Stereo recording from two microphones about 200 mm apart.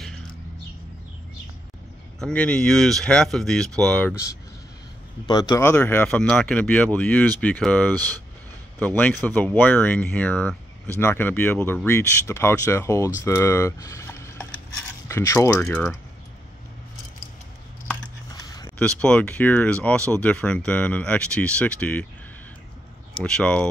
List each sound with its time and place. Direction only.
2.1 s speech: 5° left (ahead or behind)
5.2 s speech: 20° left (ahead or behind)
18.3 s a sound: 20° left (ahead or behind)
18.8 s speech: 5° left (ahead or behind)
23.1 s speech: 5° left (ahead or behind)